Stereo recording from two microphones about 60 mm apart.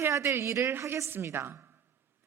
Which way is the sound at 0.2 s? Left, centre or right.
Right.